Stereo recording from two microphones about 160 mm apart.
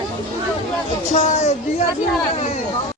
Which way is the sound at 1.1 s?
45° left (ahead or behind).